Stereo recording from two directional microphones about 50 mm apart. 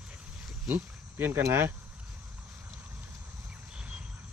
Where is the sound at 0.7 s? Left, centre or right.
Right.